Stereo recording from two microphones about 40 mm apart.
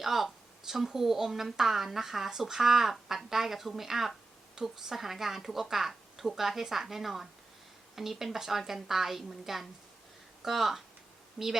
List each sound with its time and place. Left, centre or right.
0.0 s speech: centre
11.4 s speech: centre